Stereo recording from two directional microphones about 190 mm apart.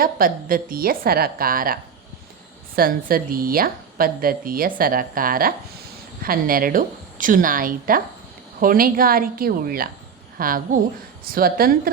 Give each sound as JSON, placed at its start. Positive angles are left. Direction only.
{"t": 0.0, "sound": "a woman's voice", "side_deg": -50}